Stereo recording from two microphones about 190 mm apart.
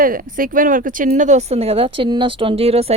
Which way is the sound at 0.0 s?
50° right (ahead or behind).